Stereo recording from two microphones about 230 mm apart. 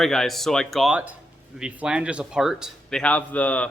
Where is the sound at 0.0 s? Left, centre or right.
Centre.